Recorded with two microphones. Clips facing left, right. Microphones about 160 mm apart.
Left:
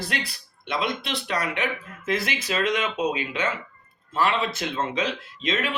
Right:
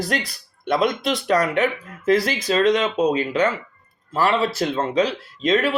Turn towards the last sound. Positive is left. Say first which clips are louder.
# right 8 dB
turn(degrees=-40)  # may be behind; listen again after turning